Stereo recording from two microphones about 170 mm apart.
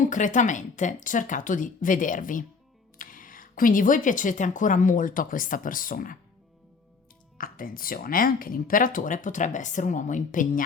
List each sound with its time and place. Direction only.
0.0 s speech: 50° left (ahead or behind)
7.3 s speech: 55° left (ahead or behind)